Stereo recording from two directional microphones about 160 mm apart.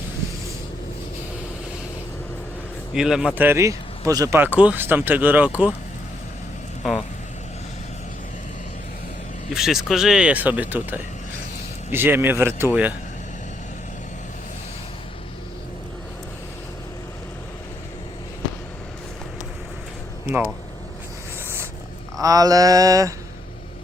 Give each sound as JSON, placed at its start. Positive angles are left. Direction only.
{"t": 2.9, "sound": "speech", "side_deg": -5}
{"t": 6.8, "sound": "speech", "side_deg": 0}
{"t": 9.5, "sound": "speech", "side_deg": -5}
{"t": 22.2, "sound": "mantra", "side_deg": -20}